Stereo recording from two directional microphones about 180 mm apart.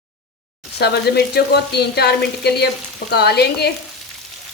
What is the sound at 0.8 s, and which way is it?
Frying, 65° left (ahead or behind).